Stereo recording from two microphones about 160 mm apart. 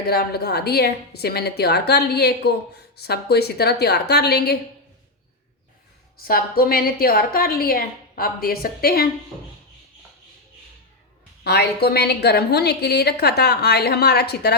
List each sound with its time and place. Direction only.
0.1 s a woman's voice: 80° left
6.2 s a woman's voice: 65° left (ahead or behind)
11.4 s a woman's voice: 85° left